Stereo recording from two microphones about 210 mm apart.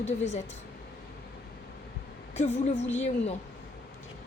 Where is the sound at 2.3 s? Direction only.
30° left (ahead or behind).